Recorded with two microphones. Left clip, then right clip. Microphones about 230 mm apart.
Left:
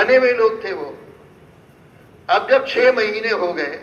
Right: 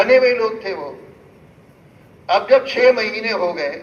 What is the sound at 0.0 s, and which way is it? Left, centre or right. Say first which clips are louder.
Speech: even; left.